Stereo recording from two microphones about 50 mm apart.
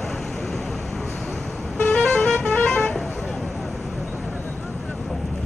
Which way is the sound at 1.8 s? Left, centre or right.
Centre.